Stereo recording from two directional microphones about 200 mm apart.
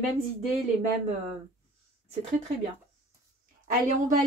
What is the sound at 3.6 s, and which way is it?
Speech, 40° right (ahead or behind).